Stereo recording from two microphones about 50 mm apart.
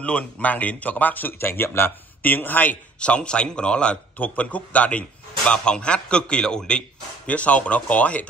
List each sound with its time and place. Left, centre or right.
0.0 s speech: left
3.0 s a man's voice: left
7.2 s a man's voice: left